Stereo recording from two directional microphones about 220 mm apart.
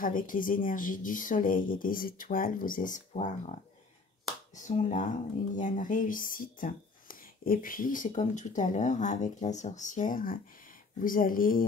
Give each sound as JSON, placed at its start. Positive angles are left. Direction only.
{"t": 0.0, "sound": "speech", "side_deg": 40}
{"t": 4.6, "sound": "speech", "side_deg": 35}